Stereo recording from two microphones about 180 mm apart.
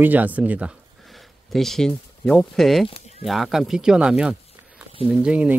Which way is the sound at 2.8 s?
30° left (ahead or behind).